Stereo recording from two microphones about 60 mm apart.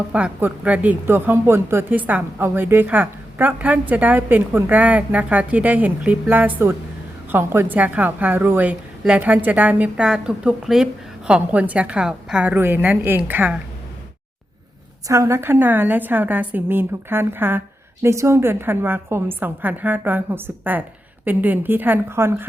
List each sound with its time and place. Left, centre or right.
0.1 s a woman's voice: right
1.0 s a woman's voice: right
1.9 s a woman's voice: right
2.4 s a woman's voice: right
2.8 s a woman's voice: right
6.6 s a woman's voice: right
7.8 s a woman's voice: right
10.0 s a woman's voice: centre
11.3 s a woman's voice: right
12.5 s a woman's voice: right
15.0 s a woman's voice: right
18.0 s a woman's voice: right
22.1 s a woman's voice: right